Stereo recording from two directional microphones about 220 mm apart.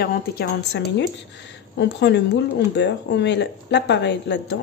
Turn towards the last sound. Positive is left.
turn(degrees=55)  # may be behind; listen again after turning